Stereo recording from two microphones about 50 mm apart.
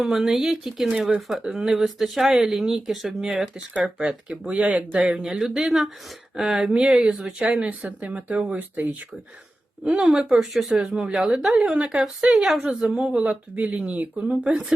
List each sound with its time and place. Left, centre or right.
0.0 s speech: centre
7.4 s speech: right
10.0 s speech: centre
13.1 s speech: right
14.3 s speech: centre